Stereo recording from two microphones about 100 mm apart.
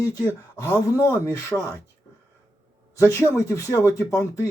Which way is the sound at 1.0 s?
30° left (ahead or behind).